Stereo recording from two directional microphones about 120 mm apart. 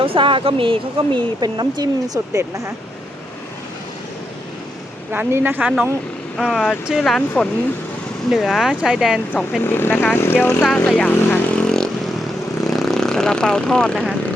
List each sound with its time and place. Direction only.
0.0 s speech: 50° right (ahead or behind); by 2.7 s 25° right (ahead or behind)
5.1 s speech: 15° right (ahead or behind); by 7.2 s centre (ahead or behind)
8.3 s speech: centre (ahead or behind)
9.6 s speech: 20° left (ahead or behind)
10.6 s vehicle: 5° left (ahead or behind)
12.6 s speech: centre (ahead or behind)